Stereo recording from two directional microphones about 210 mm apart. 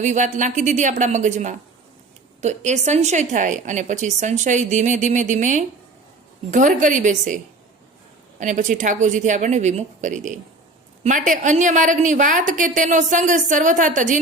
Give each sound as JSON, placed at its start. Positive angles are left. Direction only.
{"t": 0.0, "sound": "a woman's voice", "side_deg": -35}
{"t": 8.4, "sound": "a woman's voice", "side_deg": -35}